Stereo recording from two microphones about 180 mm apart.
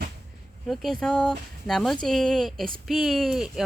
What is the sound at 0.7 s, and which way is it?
Speech, centre (ahead or behind).